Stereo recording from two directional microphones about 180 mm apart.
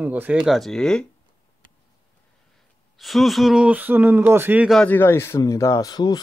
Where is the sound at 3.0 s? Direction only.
Centre (ahead or behind).